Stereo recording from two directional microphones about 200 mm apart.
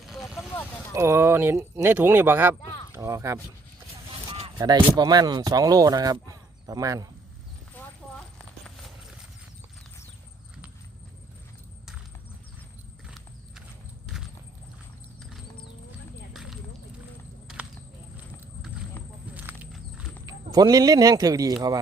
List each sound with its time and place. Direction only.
0.0 s vehicle: centre (ahead or behind)
0.9 s speech: 10° right (ahead or behind)
4.4 s speech: 25° right (ahead or behind)
8.6 s clip-clop: centre (ahead or behind)
13.1 s horse: 5° right (ahead or behind)
16.3 s a sound: centre (ahead or behind)
19.3 s horse: 10° right (ahead or behind)
20.2 s speech: 20° right (ahead or behind)